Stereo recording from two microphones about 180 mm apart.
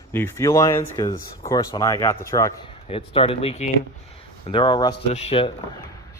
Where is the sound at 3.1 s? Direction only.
30° left (ahead or behind).